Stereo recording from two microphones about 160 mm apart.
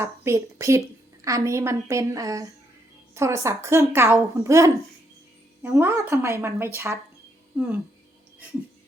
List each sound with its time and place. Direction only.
0.0 s a woman's voice: 20° right (ahead or behind)